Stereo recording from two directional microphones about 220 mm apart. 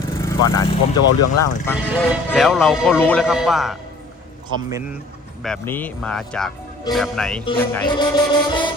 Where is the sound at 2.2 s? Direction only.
Centre (ahead or behind).